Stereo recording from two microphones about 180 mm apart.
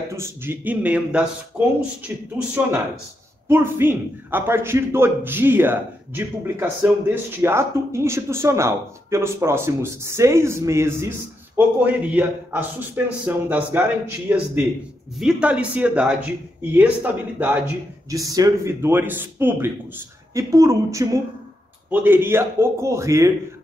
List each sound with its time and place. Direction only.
0.1 s a man's voice: 15° right (ahead or behind)
18.1 s a man's voice: 20° right (ahead or behind)